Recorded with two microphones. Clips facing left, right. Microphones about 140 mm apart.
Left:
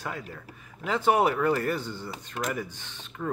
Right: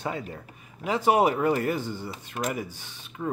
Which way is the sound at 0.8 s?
15° right (ahead or behind).